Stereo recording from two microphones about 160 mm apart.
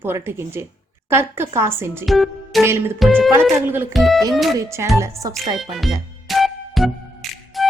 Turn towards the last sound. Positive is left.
turn(degrees=0)  # may be behind; listen again after turning